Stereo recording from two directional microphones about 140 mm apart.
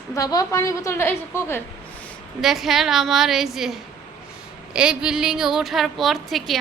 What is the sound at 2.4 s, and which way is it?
A woman's voice, centre (ahead or behind).